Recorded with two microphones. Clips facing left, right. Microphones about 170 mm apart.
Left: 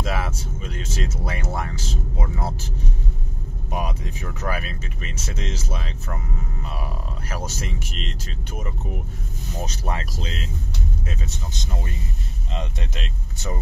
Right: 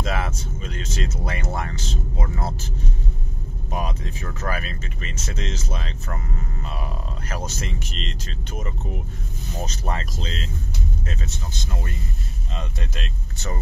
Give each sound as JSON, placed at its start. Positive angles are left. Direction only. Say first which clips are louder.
{"t": 0.0, "sound": "vehicle", "louder": "even", "side_deg": 5}
{"t": 3.7, "sound": "speech", "louder": "even", "side_deg": 10}
{"t": 7.2, "sound": "speech", "louder": "even", "side_deg": 5}
{"t": 9.7, "sound": "speech", "louder": "even", "side_deg": 10}
{"t": 12.5, "sound": "speech", "louder": "left 2 dB", "side_deg": 15}